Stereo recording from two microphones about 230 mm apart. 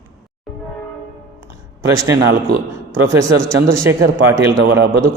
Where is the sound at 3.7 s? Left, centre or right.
Centre.